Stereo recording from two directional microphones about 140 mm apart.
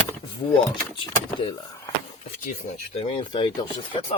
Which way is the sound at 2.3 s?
70° left (ahead or behind).